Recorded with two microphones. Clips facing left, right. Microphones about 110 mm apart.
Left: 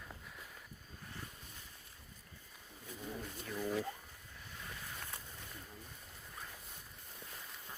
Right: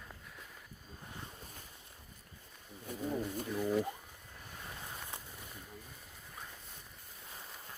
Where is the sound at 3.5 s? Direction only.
10° right (ahead or behind).